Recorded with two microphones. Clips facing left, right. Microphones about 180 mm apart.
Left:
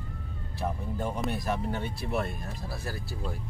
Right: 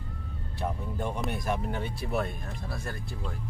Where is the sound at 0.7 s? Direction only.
5° left (ahead or behind).